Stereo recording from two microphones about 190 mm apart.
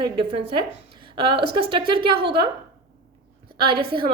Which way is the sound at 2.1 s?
60° right (ahead or behind).